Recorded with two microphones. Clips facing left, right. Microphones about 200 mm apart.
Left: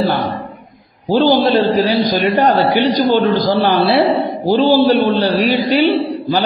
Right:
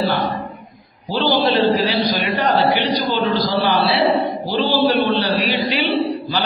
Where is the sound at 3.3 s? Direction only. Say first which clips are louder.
Left 5 dB; 50° left (ahead or behind).